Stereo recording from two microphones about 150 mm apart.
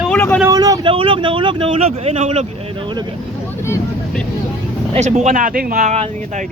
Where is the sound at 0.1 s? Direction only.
10° left (ahead or behind).